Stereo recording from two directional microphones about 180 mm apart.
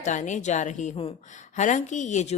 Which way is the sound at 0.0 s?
45° left (ahead or behind).